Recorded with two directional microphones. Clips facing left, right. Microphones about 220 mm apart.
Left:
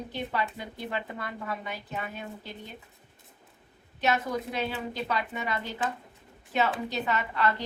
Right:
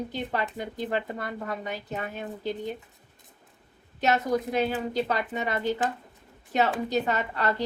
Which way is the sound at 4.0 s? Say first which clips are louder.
Right 4 dB; 40° right (ahead or behind).